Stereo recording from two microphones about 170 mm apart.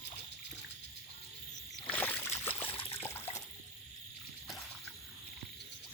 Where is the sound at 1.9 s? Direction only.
10° left (ahead or behind).